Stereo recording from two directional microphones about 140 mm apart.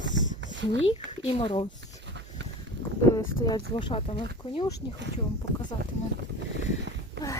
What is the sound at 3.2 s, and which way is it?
Speech, 30° left (ahead or behind).